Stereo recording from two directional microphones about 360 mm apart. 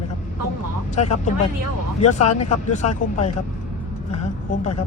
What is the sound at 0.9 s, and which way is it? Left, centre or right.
Speech, centre.